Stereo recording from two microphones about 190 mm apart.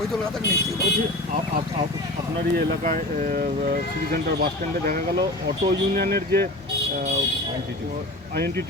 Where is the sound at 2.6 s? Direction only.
45° right (ahead or behind).